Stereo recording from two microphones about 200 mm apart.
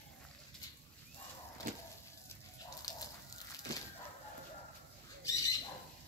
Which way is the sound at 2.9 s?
20° left (ahead or behind).